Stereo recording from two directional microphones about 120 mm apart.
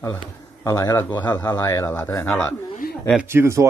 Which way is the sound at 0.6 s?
30° left (ahead or behind).